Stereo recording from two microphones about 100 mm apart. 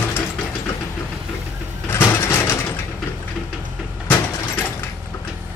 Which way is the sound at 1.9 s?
25° left (ahead or behind).